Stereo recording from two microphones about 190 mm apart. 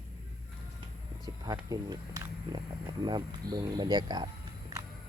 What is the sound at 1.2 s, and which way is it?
Speech, 20° right (ahead or behind).